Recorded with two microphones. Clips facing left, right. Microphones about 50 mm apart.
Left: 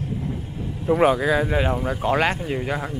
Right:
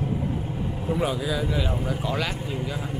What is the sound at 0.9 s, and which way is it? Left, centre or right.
Speech, left.